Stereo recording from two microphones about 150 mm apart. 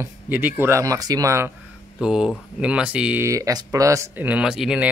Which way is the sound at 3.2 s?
20° right (ahead or behind).